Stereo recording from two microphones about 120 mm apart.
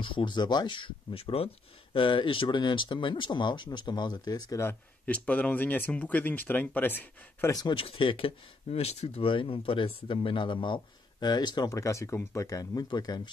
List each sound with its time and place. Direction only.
0.0 s speech: 45° left (ahead or behind)
4.6 s speech: 15° left (ahead or behind)
7.5 s speech: 35° left (ahead or behind)
7.8 s speech: 45° left (ahead or behind)